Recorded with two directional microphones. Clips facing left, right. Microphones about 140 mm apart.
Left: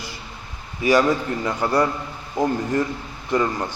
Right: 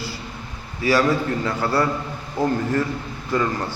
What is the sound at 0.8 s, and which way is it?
A man's voice, 15° left (ahead or behind).